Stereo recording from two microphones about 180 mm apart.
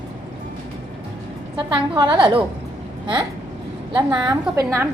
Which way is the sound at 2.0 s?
25° right (ahead or behind).